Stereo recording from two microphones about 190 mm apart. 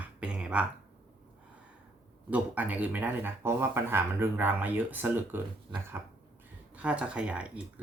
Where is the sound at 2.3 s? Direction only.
10° right (ahead or behind).